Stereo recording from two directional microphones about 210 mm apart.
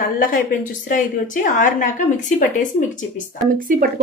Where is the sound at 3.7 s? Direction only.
40° right (ahead or behind).